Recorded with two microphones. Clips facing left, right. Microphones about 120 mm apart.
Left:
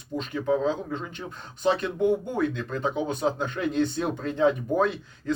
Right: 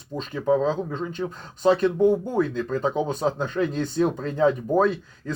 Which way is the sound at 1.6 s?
40° right (ahead or behind).